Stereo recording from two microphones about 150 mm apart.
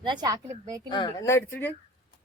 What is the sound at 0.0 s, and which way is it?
Speech, 30° right (ahead or behind).